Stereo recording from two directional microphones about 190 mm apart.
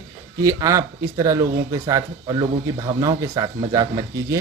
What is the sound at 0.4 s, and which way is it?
A man's voice, 20° right (ahead or behind).